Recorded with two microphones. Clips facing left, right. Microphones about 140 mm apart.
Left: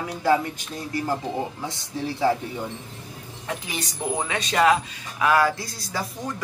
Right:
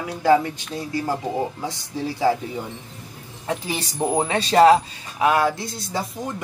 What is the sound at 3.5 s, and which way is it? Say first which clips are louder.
Speech: right 5 dB; 30° right (ahead or behind).